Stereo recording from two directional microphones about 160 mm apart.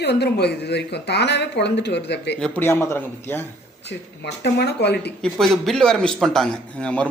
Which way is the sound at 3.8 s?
90° left.